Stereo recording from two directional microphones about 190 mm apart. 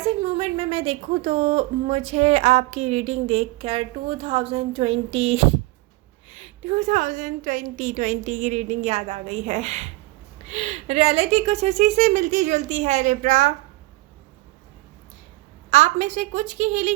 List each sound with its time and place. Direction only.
0.0 s a woman's voice: 30° right (ahead or behind)
15.7 s a woman's voice: 40° right (ahead or behind)